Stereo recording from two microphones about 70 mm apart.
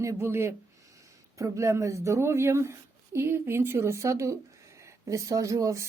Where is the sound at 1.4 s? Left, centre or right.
Right.